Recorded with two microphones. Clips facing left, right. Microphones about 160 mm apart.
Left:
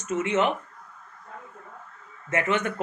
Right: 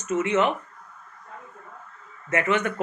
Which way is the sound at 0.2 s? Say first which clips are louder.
Right 1 dB; 25° left (ahead or behind).